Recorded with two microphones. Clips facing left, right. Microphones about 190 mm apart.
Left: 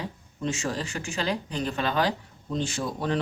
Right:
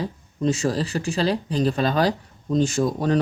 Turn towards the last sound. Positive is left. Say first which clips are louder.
# right 7 dB
turn(degrees=-40)  # may be behind; listen again after turning